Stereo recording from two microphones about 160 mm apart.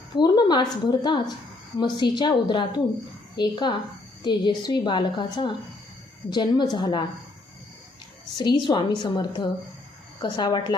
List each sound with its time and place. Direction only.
0.2 s a woman's voice: 25° left (ahead or behind)
8.4 s a woman's voice: 30° left (ahead or behind)